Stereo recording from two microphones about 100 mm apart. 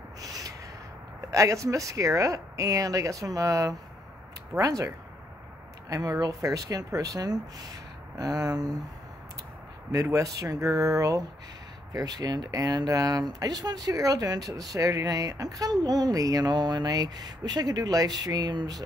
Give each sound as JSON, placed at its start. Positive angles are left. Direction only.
{"t": 0.2, "sound": "a sound", "side_deg": -35}
{"t": 1.3, "sound": "speech", "side_deg": -35}
{"t": 10.1, "sound": "speech", "side_deg": -35}